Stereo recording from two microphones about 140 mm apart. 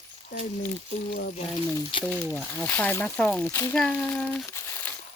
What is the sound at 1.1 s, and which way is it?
Speech, 90° left.